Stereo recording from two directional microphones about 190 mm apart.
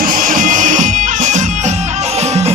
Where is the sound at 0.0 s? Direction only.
45° right (ahead or behind).